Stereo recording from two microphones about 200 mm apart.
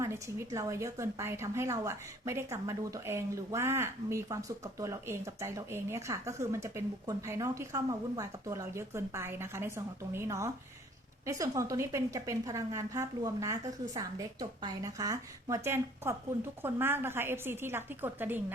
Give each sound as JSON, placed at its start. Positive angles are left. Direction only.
{"t": 0.0, "sound": "a woman's voice", "side_deg": -15}